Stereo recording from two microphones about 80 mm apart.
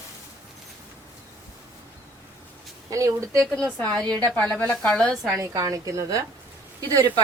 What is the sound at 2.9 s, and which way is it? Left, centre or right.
Speech, right.